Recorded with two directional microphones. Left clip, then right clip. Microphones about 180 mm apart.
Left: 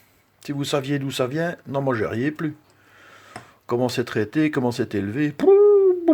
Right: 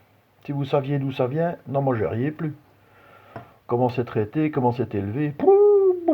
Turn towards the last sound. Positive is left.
turn(degrees=40)  # may be behind; listen again after turning